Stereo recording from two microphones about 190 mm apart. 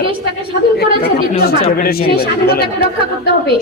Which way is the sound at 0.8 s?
55° left (ahead or behind).